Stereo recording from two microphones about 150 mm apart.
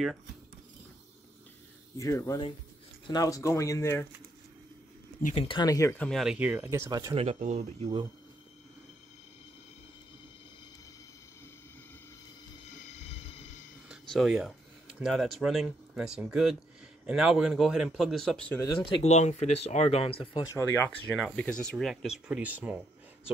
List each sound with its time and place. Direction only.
2.0 s speech: 20° left (ahead or behind)
5.3 s speech: 40° left (ahead or behind)
5.6 s speech: 20° left (ahead or behind)
5.9 s speech: centre (ahead or behind); by 7.2 s 20° right (ahead or behind)
7.3 s speech: 50° right (ahead or behind)
12.8 s a sound: 45° left (ahead or behind)
13.8 s a sound: centre (ahead or behind)
15.0 s speech: centre (ahead or behind)
19.0 s speech: 50° left (ahead or behind)
20.5 s speech: 15° left (ahead or behind)
21.1 s speech: 5° left (ahead or behind)